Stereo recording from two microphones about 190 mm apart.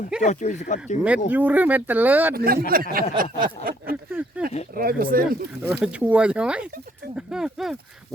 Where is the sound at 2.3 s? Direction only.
50° right (ahead or behind).